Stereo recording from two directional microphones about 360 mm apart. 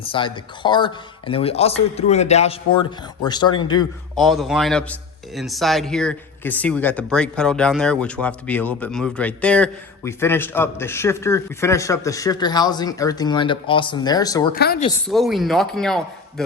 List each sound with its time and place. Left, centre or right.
0.0 s speech: centre
4.2 s a man's voice: centre
14.5 s speech: left
14.8 s a man's voice: centre